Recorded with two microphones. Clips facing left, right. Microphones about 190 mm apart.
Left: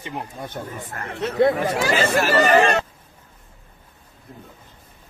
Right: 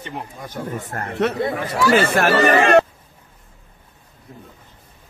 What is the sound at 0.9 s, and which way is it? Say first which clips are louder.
Speech: right 3 dB; 45° right (ahead or behind).